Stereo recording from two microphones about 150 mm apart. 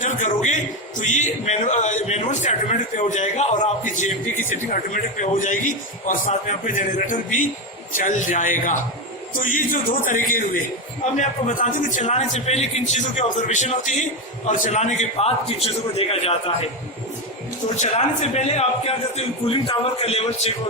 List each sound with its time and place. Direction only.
0.0 s a man's voice: 55° left (ahead or behind)
11.2 s a man's voice: 55° left (ahead or behind)
17.7 s a man's voice: 50° left (ahead or behind)